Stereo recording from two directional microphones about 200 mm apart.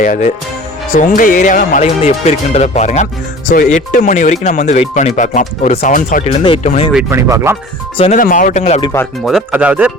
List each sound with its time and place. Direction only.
0.0 s speech: 40° left (ahead or behind)
6.9 s speech: 15° right (ahead or behind)
7.9 s speech: 30° left (ahead or behind)
8.2 s speech: 40° left (ahead or behind)
9.2 s speech: 5° right (ahead or behind)